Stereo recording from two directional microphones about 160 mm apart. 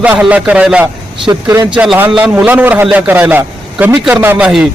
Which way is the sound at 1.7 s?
10° right (ahead or behind).